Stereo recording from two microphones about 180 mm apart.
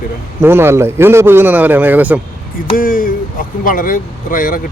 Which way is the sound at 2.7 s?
50° left (ahead or behind).